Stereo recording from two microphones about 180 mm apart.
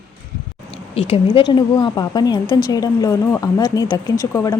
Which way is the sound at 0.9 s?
35° left (ahead or behind).